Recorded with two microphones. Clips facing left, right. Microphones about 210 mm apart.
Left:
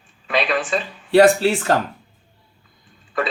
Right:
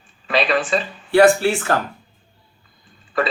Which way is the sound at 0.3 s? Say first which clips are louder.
Right 2 dB; centre (ahead or behind).